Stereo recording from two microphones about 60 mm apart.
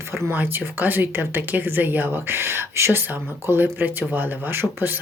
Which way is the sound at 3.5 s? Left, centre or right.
Right.